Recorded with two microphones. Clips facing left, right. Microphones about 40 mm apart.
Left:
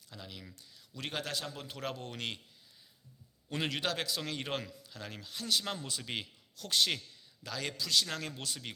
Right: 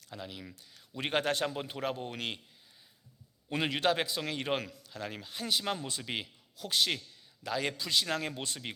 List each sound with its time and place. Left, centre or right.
0.1 s a man's voice: centre
0.9 s a man's voice: right
1.5 s a man's voice: right
3.5 s a man's voice: centre
7.4 s a man's voice: centre